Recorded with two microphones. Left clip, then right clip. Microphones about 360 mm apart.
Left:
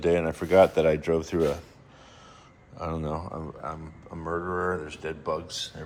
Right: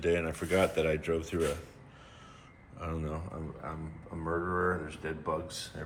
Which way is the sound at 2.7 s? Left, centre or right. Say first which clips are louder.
Left 7 dB; centre.